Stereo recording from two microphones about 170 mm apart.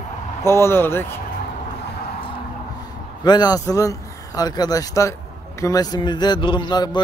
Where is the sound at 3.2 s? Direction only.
25° left (ahead or behind).